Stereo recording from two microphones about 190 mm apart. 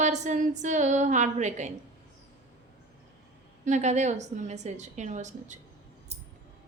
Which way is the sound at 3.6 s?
40° right (ahead or behind).